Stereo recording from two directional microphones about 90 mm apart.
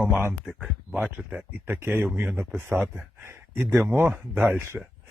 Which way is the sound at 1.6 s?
25° right (ahead or behind).